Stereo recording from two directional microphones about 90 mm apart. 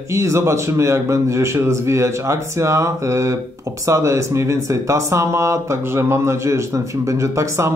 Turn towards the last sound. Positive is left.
turn(degrees=-35)  # may be behind; listen again after turning